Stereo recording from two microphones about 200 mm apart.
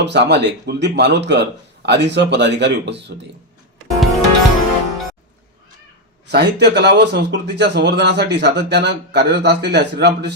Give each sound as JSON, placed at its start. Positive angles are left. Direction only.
{"t": 0.0, "sound": "speech", "side_deg": -60}
{"t": 3.8, "sound": "music", "side_deg": 0}
{"t": 6.3, "sound": "speech", "side_deg": -55}